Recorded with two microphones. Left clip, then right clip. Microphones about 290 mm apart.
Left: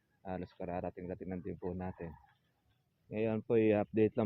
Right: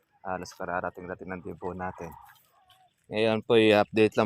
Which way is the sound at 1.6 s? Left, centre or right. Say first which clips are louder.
Right 8 dB; centre.